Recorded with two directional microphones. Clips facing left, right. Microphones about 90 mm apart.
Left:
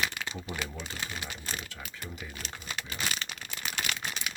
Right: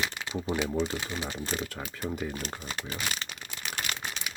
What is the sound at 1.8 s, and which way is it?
Speech, 35° right (ahead or behind).